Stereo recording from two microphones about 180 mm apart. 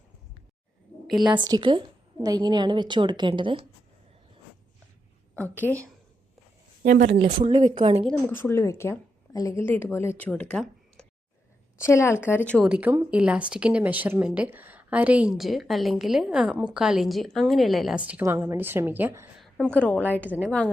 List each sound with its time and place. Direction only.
1.2 s a woman's voice: 25° right (ahead or behind)
5.5 s a woman's voice: 10° left (ahead or behind)
6.8 s speech: 45° right (ahead or behind)
7.2 s a woman's voice: 30° right (ahead or behind)
8.0 s a woman's voice: 10° left (ahead or behind)
12.6 s speech: 10° right (ahead or behind)
19.4 s a woman's voice: centre (ahead or behind)